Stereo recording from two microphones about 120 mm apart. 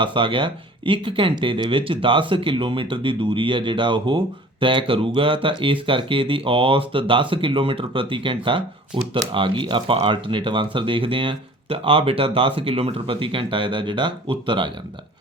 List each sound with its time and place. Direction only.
0.0 s speech: 45° right (ahead or behind)